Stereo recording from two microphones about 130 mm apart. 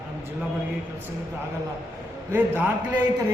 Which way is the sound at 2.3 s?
15° right (ahead or behind).